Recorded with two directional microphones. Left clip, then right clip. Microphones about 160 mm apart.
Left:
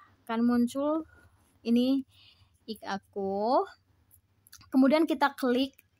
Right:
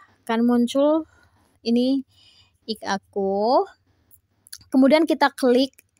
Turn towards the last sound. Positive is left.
turn(degrees=-35)  # may be behind; listen again after turning